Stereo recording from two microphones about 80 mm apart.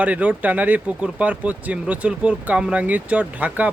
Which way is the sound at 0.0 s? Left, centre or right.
Centre.